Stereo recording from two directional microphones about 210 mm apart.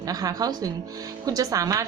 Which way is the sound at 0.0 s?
15° right (ahead or behind).